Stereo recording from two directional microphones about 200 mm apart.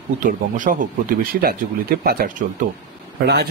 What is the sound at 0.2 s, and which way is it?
Speech, 40° right (ahead or behind).